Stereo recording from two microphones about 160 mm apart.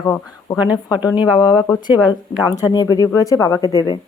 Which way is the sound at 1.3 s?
25° left (ahead or behind).